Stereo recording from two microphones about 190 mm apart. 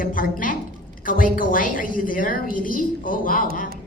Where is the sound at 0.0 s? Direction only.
45° left (ahead or behind).